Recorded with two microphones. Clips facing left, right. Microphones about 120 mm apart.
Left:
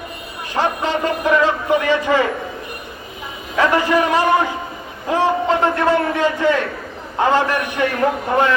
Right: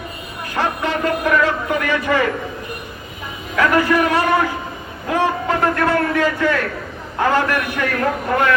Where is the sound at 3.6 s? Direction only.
20° left (ahead or behind).